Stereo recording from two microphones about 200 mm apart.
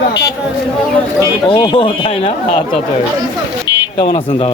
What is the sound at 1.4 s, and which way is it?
Speech, 25° left (ahead or behind).